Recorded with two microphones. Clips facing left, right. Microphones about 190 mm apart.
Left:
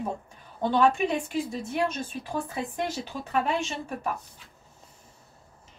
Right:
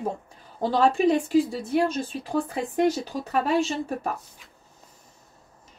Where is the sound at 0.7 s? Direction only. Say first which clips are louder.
Right 3 dB; 35° right (ahead or behind).